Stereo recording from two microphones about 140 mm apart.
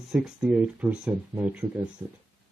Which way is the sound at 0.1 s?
5° right (ahead or behind).